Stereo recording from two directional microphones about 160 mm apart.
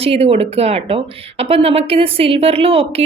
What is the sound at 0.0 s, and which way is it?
Speech, 40° right (ahead or behind).